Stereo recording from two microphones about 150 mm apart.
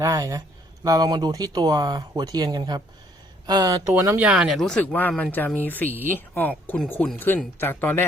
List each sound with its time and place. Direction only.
0.0 s speech: 20° right (ahead or behind)
4.3 s speech: 5° right (ahead or behind); by 8.0 s 15° left (ahead or behind)